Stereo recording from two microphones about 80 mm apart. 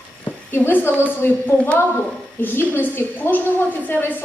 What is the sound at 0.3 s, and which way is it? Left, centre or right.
A woman's voice, left.